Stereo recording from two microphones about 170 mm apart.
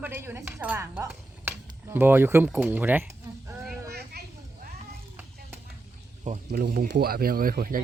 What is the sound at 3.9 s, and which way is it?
Children playing, 65° right (ahead or behind).